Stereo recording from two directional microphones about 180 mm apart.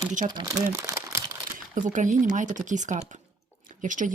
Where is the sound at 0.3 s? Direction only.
20° right (ahead or behind).